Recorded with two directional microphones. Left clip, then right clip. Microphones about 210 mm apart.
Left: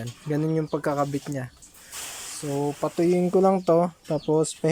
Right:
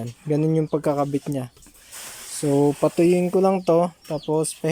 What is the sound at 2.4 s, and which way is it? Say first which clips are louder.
Speech: right 9 dB; 25° right (ahead or behind).